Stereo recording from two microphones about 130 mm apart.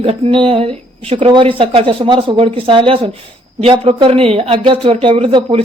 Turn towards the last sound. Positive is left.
turn(degrees=-45)  # may be behind; listen again after turning